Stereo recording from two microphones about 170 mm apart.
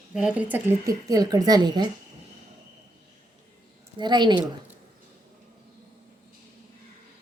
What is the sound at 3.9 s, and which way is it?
Speech, 25° right (ahead or behind).